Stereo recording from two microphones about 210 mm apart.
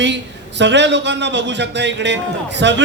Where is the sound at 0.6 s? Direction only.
55° right (ahead or behind).